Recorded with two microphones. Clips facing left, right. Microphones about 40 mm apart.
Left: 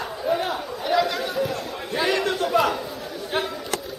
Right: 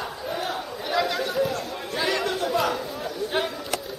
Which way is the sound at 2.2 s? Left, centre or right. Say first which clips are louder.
Left 3 dB; left.